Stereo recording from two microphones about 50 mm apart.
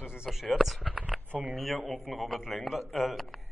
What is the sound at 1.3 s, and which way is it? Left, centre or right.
Speech, right.